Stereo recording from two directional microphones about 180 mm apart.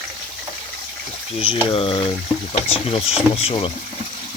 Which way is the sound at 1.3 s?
30° left (ahead or behind).